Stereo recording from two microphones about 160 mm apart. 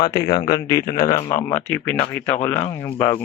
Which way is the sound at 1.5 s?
10° left (ahead or behind).